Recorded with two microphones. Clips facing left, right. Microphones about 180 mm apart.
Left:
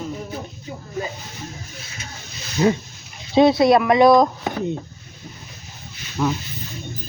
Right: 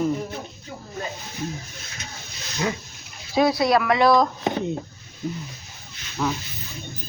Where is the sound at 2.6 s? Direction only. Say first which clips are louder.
Left 8 dB; 30° left (ahead or behind).